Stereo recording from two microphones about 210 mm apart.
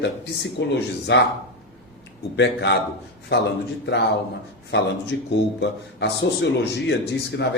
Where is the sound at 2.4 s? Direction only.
55° left (ahead or behind).